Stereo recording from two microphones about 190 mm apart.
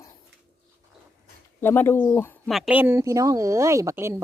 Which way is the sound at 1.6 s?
10° left (ahead or behind).